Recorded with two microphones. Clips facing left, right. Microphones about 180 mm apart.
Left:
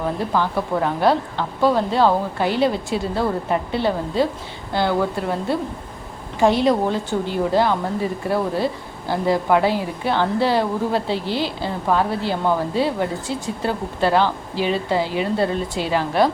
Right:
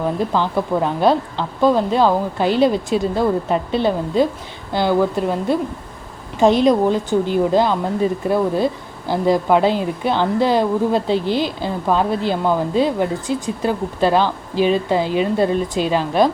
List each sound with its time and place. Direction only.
0.2 s a woman's voice: 20° right (ahead or behind)